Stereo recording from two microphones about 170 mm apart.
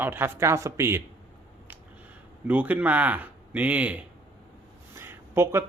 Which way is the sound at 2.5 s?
10° right (ahead or behind).